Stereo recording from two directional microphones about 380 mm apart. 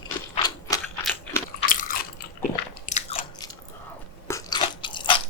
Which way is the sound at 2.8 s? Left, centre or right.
Centre.